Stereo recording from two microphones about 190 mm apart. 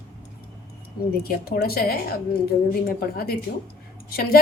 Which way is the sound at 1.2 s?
55° left (ahead or behind).